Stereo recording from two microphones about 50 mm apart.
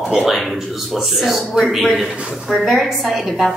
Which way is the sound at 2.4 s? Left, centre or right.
Centre.